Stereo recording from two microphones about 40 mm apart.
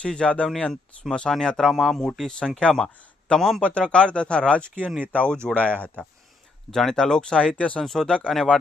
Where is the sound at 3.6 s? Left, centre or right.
Left.